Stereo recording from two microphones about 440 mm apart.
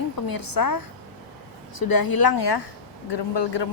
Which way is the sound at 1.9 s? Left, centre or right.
Left.